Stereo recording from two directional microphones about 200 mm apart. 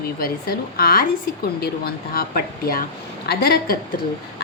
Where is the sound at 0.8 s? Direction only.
45° left (ahead or behind).